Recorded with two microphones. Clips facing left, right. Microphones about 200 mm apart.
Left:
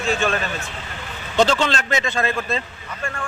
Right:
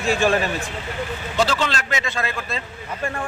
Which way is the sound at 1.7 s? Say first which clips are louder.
Left 3 dB; 35° left (ahead or behind).